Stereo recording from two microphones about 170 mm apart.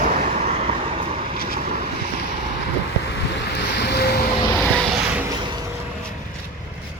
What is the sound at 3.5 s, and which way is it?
Waves, 75° left (ahead or behind).